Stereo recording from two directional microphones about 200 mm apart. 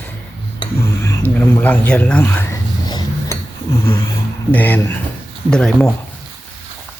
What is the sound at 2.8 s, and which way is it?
Cutlery, 20° left (ahead or behind).